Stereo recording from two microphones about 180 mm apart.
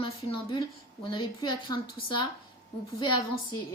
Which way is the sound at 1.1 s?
25° left (ahead or behind).